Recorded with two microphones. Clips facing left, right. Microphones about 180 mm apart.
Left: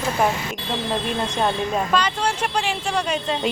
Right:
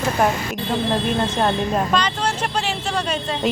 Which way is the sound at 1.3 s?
Centre (ahead or behind).